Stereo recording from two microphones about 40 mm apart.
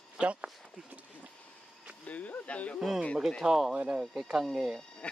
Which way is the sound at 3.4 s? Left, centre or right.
Centre.